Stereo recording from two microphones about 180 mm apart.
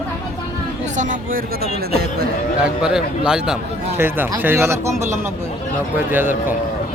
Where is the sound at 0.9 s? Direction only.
45° right (ahead or behind).